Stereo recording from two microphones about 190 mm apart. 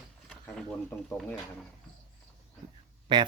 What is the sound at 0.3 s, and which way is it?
Speech, 5° left (ahead or behind).